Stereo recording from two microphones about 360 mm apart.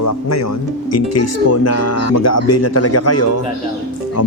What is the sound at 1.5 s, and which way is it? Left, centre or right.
Speech, left.